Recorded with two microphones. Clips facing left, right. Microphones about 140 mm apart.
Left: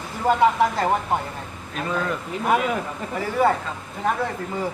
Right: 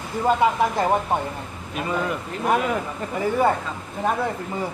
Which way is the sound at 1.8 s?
10° right (ahead or behind).